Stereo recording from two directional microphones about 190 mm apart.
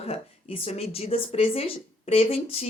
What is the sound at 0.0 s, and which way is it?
Speech, 30° left (ahead or behind).